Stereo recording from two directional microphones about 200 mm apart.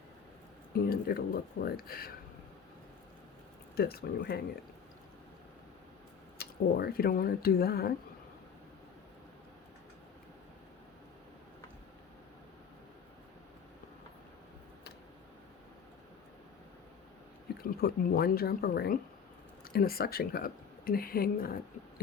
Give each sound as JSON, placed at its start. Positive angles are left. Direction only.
{"t": 0.7, "sound": "speech", "side_deg": 50}
{"t": 3.8, "sound": "speech", "side_deg": 50}
{"t": 6.4, "sound": "speech", "side_deg": 50}
{"t": 17.6, "sound": "speech", "side_deg": 50}